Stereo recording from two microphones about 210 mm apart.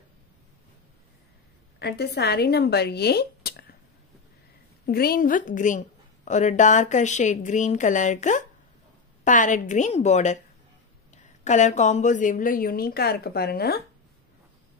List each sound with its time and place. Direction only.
1.8 s speech: 50° left (ahead or behind)
4.8 s a woman's voice: 45° left (ahead or behind)
11.4 s a woman's voice: 35° left (ahead or behind)